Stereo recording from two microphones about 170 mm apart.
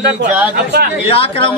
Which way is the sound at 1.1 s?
35° left (ahead or behind).